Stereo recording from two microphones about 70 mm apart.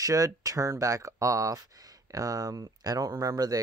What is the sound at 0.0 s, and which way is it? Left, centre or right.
Speech, right.